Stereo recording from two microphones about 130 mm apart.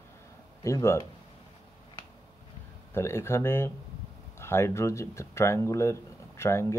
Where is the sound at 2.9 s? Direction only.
20° left (ahead or behind).